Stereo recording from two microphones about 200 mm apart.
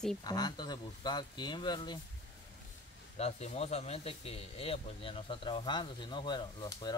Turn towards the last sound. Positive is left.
turn(degrees=20)  # may be behind; listen again after turning